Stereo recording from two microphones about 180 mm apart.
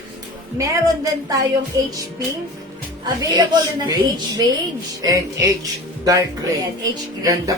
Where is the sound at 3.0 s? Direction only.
25° right (ahead or behind).